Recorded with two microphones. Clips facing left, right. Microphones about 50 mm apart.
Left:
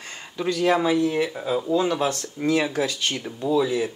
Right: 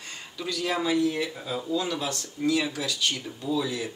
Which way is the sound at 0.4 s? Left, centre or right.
Left.